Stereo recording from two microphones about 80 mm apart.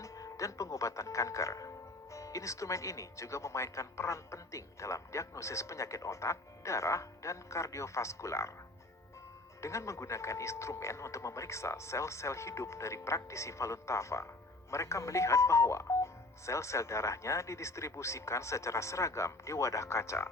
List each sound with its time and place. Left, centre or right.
0.0 s speech: left
9.6 s speech: left